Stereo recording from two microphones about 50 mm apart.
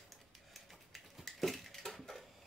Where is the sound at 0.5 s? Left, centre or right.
Centre.